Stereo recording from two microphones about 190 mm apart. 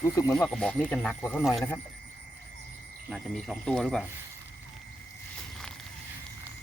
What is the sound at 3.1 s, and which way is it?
Speech, centre (ahead or behind).